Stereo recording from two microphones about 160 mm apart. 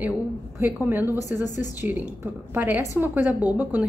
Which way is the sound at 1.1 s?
20° left (ahead or behind).